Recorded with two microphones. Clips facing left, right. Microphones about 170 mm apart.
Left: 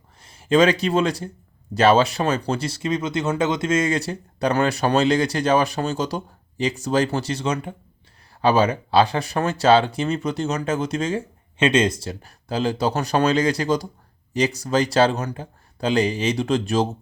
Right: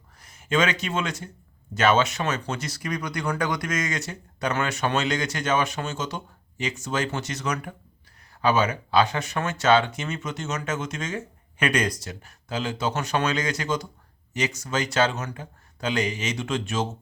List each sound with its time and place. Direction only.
0.2 s speech: 30° left (ahead or behind)